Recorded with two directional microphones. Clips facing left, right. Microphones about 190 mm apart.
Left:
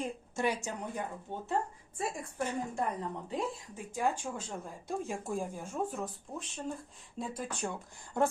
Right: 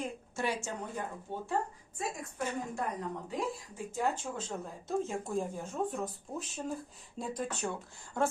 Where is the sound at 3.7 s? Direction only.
15° left (ahead or behind).